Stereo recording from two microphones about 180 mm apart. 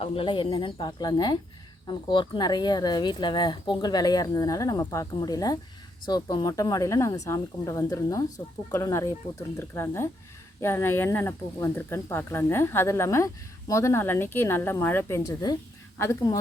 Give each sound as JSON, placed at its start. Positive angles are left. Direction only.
{"t": 0.0, "sound": "speech", "side_deg": 30}